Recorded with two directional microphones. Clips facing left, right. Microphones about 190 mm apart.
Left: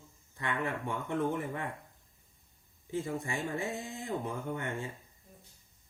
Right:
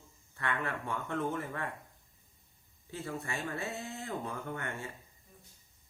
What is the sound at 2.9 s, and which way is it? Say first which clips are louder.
Speech: left 4 dB; 15° left (ahead or behind).